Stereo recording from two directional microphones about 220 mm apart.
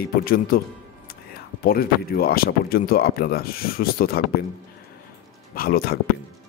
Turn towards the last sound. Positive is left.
turn(degrees=45)  # may be behind; listen again after turning